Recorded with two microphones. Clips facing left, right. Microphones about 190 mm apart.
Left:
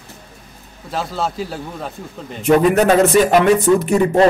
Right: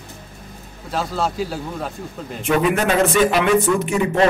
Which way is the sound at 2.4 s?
40° left (ahead or behind).